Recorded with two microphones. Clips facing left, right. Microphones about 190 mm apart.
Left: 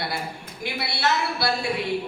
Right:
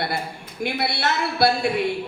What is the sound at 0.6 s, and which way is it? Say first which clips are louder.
Speech: right 3 dB; 55° right (ahead or behind).